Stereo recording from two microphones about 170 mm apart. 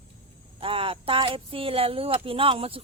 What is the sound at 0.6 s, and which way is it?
Speech, 30° right (ahead or behind).